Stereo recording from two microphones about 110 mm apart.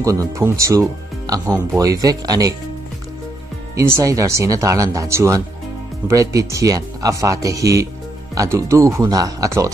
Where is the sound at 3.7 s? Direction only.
30° right (ahead or behind).